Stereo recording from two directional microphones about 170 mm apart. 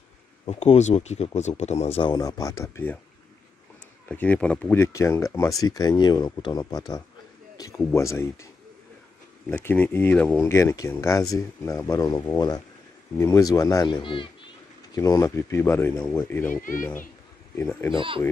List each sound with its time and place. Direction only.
0.5 s speech: 40° left (ahead or behind); by 3.0 s 15° left (ahead or behind)
4.1 s speech: 10° left (ahead or behind)
9.5 s speech: 10° left (ahead or behind)
13.9 s speech: 30° left (ahead or behind)
15.0 s speech: 20° left (ahead or behind)
17.6 s speech: 15° left (ahead or behind)
17.9 s speech: 30° right (ahead or behind)